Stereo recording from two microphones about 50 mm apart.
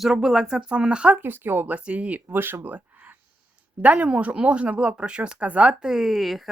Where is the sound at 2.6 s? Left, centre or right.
Right.